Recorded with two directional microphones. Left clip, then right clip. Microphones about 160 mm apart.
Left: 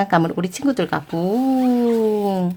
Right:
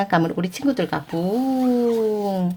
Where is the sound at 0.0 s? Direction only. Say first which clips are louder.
Left 2 dB; 15° left (ahead or behind).